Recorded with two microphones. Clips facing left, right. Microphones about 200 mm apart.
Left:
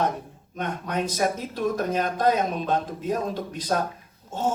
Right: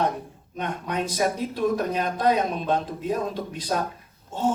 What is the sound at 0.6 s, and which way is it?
Speech, 45° left (ahead or behind).